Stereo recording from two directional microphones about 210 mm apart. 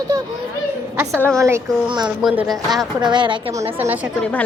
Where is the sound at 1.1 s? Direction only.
5° left (ahead or behind).